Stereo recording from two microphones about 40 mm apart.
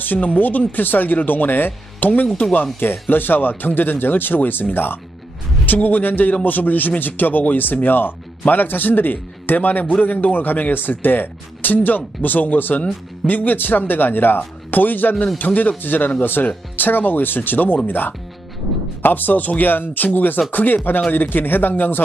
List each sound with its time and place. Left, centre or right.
0.0 s speech: left
5.7 s speech: left
10.4 s speech: left